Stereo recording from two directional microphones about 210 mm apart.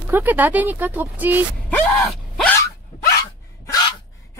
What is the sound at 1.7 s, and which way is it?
Groan, centre (ahead or behind).